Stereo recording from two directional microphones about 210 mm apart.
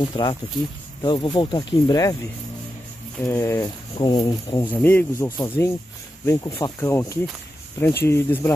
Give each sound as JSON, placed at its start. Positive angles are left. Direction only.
{"t": 0.0, "sound": "speech", "side_deg": 20}
{"t": 3.2, "sound": "speech", "side_deg": 10}
{"t": 4.6, "sound": "speech", "side_deg": 10}